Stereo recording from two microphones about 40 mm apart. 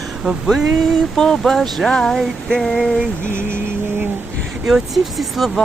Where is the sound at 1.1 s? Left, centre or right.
Centre.